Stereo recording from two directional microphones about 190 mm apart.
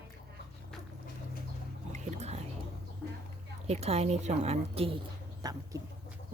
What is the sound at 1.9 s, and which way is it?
Boat, 40° right (ahead or behind).